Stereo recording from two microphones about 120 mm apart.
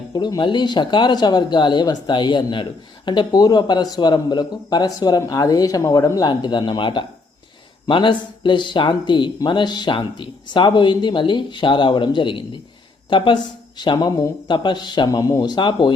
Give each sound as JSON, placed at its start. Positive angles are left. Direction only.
{"t": 0.1, "sound": "speech", "side_deg": 35}